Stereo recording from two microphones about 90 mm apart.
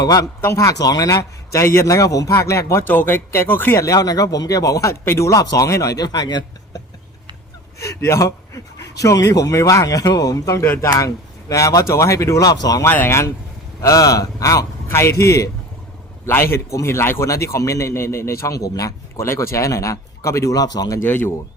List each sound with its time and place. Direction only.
0.0 s a man's voice: 45° left (ahead or behind)
2.9 s speech: 20° left (ahead or behind)
3.8 s a man's voice: 45° left (ahead or behind)
7.8 s a man's voice: 35° left (ahead or behind)
12.8 s a man's voice: 25° left (ahead or behind); by 21.0 s 45° left (ahead or behind)
21.0 s speech: 25° left (ahead or behind)